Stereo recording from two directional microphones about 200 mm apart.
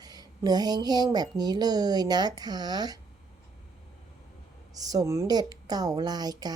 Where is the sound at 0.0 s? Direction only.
20° right (ahead or behind).